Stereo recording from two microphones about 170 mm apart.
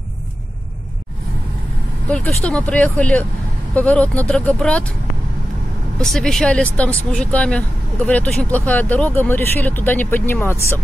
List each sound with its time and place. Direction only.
2.0 s speech: 5° left (ahead or behind)
5.9 s speech: 5° left (ahead or behind)